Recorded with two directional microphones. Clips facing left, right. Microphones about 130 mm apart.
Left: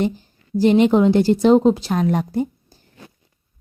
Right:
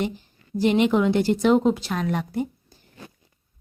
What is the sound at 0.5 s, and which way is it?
A woman's voice, 35° left (ahead or behind).